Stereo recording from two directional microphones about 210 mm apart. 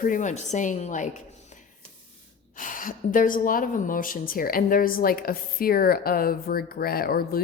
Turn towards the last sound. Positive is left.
turn(degrees=45)  # may be behind; listen again after turning